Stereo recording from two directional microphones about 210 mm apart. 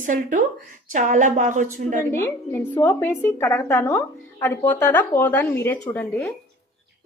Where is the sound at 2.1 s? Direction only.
10° left (ahead or behind).